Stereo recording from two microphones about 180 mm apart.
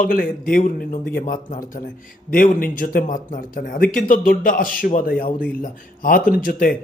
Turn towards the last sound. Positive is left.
turn(degrees=50)  # may be behind; listen again after turning